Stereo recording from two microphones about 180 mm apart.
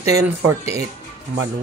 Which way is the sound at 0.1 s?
15° right (ahead or behind).